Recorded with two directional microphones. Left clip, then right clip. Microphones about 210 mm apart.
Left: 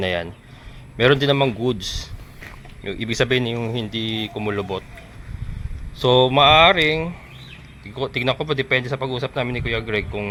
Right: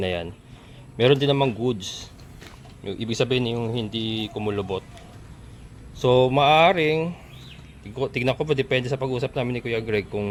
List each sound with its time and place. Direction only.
0.0 s a man's voice: 10° right (ahead or behind)
6.0 s a man's voice: 5° right (ahead or behind); by 10.2 s 25° right (ahead or behind)